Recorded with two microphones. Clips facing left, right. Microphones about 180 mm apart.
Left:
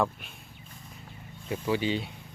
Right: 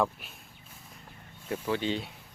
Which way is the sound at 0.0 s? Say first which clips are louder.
Even; centre (ahead or behind).